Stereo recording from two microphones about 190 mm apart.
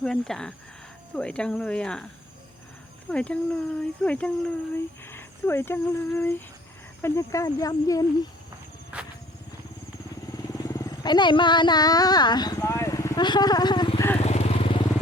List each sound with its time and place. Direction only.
0.0 s speech: 5° left (ahead or behind)
3.1 s speech: 5° left (ahead or behind)
8.9 s a sound: 5° right (ahead or behind)
10.2 s speech: 20° left (ahead or behind)
14.2 s motorcycle: 35° left (ahead or behind)